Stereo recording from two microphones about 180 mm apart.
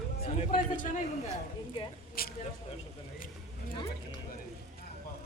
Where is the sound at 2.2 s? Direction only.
55° left (ahead or behind).